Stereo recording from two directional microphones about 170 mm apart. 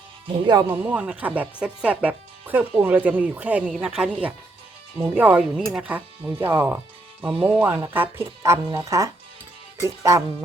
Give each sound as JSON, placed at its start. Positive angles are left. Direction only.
{"t": 0.7, "sound": "speech", "side_deg": -10}